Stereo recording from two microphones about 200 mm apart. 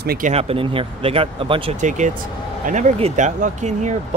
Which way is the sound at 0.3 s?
30° right (ahead or behind).